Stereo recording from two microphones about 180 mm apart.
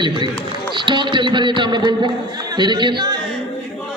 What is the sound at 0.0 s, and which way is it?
A man's voice, 25° right (ahead or behind).